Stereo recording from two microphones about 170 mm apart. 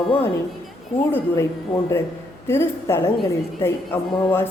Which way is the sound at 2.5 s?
15° left (ahead or behind).